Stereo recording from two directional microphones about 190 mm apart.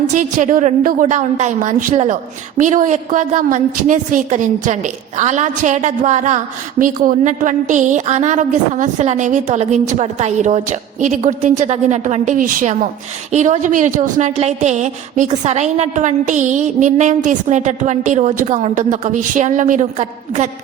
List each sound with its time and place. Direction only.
0.1 s a woman's voice: 40° right (ahead or behind)